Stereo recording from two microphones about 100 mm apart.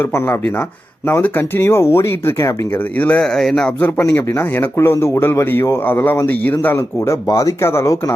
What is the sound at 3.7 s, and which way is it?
Speech, 25° left (ahead or behind).